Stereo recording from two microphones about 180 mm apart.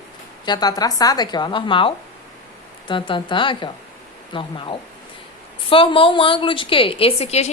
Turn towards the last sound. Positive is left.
turn(degrees=35)  # may be behind; listen again after turning